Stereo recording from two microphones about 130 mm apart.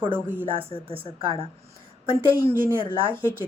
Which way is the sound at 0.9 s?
45° right (ahead or behind).